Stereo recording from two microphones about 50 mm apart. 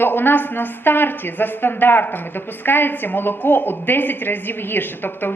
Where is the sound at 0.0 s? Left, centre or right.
Left.